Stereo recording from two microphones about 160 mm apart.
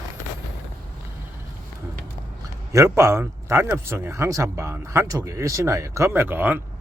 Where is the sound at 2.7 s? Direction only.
20° right (ahead or behind).